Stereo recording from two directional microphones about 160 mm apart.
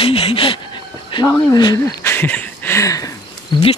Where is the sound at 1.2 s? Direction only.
20° left (ahead or behind).